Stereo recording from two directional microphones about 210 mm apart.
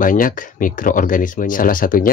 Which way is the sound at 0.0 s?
40° left (ahead or behind).